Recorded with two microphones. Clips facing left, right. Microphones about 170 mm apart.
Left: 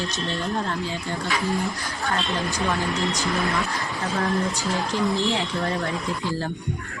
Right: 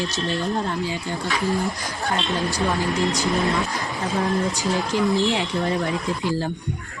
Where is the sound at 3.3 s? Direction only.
20° right (ahead or behind).